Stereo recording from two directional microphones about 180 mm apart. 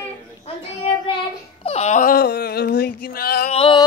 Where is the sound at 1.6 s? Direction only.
35° left (ahead or behind); by 3.5 s 55° left (ahead or behind).